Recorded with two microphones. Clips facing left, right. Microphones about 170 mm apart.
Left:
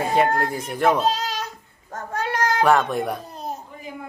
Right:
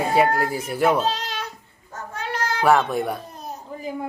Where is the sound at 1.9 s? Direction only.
50° left (ahead or behind).